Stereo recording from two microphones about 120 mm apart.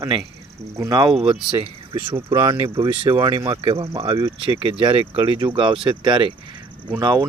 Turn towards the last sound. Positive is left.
turn(degrees=-35)  # may be behind; listen again after turning